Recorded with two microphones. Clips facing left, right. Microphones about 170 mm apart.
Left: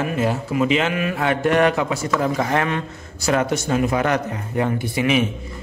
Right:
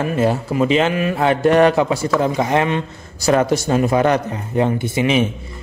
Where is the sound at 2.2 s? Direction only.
20° right (ahead or behind).